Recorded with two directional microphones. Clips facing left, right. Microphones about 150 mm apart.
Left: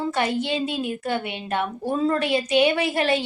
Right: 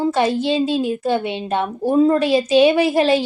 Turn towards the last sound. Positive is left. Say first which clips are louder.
# right 7 dB
turn(degrees=-25)  # may be behind; listen again after turning